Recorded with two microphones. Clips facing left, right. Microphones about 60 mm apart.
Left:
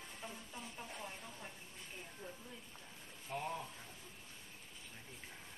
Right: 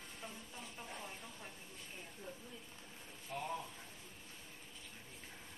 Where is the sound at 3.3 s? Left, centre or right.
Centre.